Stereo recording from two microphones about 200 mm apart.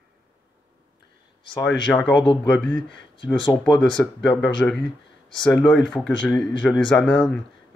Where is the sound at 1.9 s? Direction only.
5° left (ahead or behind).